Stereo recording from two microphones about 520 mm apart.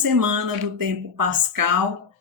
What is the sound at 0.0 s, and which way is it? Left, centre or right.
Speech, right.